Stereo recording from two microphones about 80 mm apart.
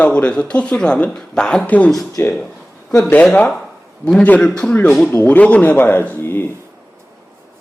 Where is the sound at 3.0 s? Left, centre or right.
Centre.